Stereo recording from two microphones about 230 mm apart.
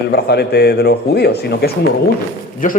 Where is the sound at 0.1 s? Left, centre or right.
Left.